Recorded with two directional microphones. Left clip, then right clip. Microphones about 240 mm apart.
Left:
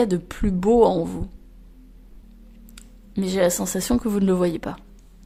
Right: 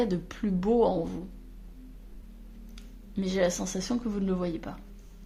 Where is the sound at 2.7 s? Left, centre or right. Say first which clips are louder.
Left 7 dB; left.